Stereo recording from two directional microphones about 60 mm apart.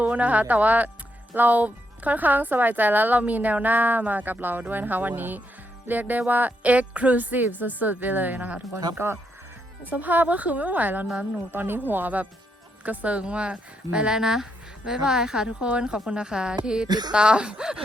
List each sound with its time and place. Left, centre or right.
0.0 s a woman's voice: right
9.0 s speech: right
9.8 s a woman's voice: right